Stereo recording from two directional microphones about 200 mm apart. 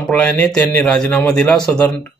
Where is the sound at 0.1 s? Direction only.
10° left (ahead or behind).